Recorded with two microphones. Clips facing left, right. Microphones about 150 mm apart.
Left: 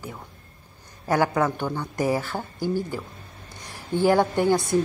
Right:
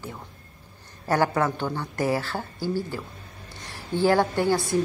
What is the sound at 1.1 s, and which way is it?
A woman's voice, 15° left (ahead or behind).